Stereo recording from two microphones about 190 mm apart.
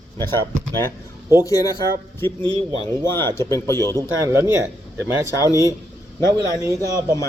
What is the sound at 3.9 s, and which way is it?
Speech, 15° right (ahead or behind).